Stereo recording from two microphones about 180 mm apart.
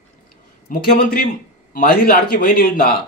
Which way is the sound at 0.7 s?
55° left (ahead or behind).